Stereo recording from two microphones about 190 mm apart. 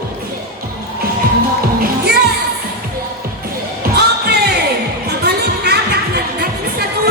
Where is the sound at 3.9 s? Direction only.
55° right (ahead or behind).